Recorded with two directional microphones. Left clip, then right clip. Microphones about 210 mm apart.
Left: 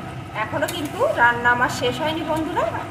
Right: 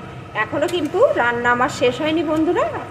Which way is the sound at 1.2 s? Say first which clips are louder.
Even; 35° right (ahead or behind).